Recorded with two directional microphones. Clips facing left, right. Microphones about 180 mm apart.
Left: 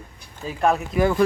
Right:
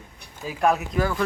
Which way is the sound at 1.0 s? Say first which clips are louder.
Left 10 dB; 20° left (ahead or behind).